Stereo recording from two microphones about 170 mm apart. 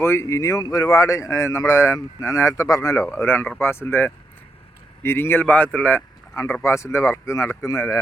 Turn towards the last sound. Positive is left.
turn(degrees=15)  # may be behind; listen again after turning